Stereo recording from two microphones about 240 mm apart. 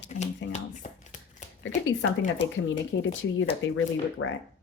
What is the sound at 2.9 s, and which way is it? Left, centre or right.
Speech, left.